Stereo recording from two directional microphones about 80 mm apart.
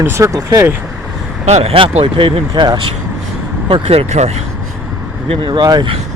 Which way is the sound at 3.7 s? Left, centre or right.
Right.